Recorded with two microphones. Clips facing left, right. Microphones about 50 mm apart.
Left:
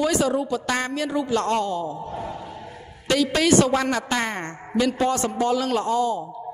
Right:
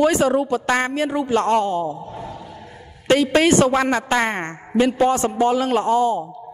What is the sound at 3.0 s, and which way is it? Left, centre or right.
A woman's voice, right.